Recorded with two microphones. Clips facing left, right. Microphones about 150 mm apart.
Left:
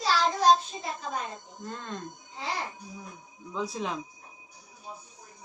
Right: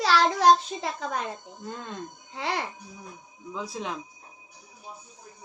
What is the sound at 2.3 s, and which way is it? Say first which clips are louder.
Speech: right 5 dB; 70° right (ahead or behind).